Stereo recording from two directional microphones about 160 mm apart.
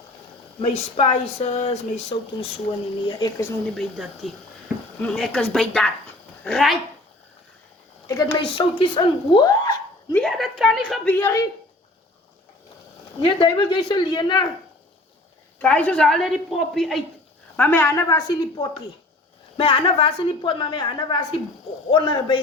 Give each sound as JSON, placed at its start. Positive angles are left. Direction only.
{"t": 0.6, "sound": "speech", "side_deg": 40}
{"t": 3.1, "sound": "a woman's voice", "side_deg": 25}
{"t": 3.8, "sound": "a woman's voice", "side_deg": 0}
{"t": 8.0, "sound": "a woman's voice", "side_deg": 25}
{"t": 10.2, "sound": "a woman's voice", "side_deg": 0}
{"t": 11.1, "sound": "speech", "side_deg": 15}
{"t": 13.2, "sound": "a woman's voice", "side_deg": 30}
{"t": 15.6, "sound": "a woman's voice", "side_deg": 5}
{"t": 17.6, "sound": "a woman's voice", "side_deg": 15}